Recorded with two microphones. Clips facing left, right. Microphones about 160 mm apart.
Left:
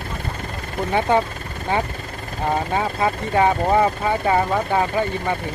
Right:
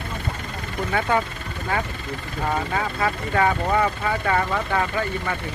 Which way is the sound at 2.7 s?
25° left (ahead or behind).